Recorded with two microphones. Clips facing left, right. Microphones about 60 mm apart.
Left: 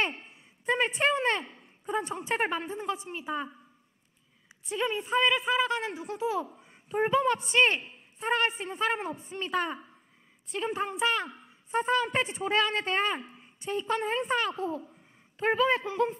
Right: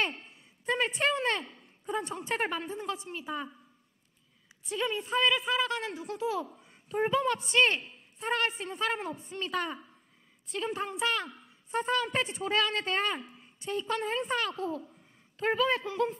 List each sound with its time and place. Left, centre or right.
0.0 s a sound: centre
1.1 s speech: centre
2.0 s speech: centre
2.2 s a woman's voice: centre
4.7 s a woman's voice: centre
9.3 s a woman's voice: centre